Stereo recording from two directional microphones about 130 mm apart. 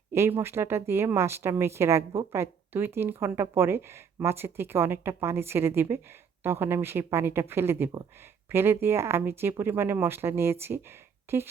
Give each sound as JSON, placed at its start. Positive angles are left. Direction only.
{"t": 0.1, "sound": "speech", "side_deg": -20}